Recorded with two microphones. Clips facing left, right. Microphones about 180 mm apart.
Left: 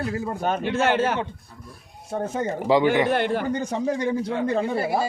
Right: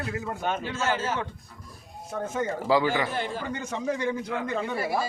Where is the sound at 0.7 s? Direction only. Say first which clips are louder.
Left 9 dB; 65° left (ahead or behind).